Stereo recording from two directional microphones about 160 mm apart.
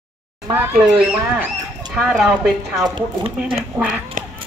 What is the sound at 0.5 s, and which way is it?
Speech, 15° right (ahead or behind).